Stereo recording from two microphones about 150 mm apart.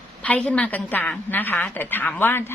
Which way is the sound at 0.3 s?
10° left (ahead or behind).